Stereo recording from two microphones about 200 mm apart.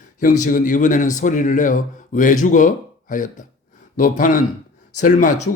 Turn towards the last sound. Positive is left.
turn(degrees=40)  # may be behind; listen again after turning